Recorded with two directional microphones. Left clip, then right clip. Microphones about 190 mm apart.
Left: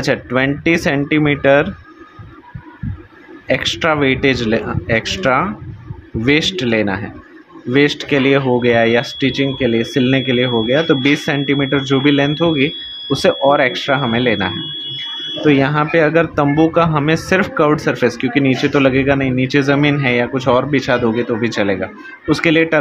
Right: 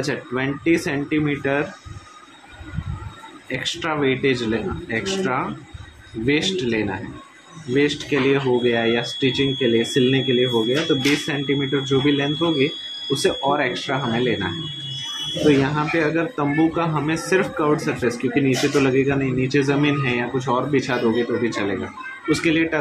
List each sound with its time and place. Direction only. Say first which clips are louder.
0.0 s speech: left 8 dB; 55° left (ahead or behind)
3.4 s speech: left 10 dB; 55° left (ahead or behind)